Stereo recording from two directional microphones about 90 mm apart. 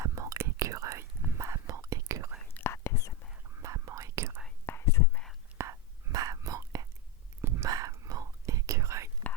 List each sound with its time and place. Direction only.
0.0 s whispering: 35° right (ahead or behind)
2.6 s whispering: 30° left (ahead or behind)
3.6 s whispering: 35° right (ahead or behind)
4.6 s whispering: 25° left (ahead or behind)
5.5 s whispering: 35° right (ahead or behind)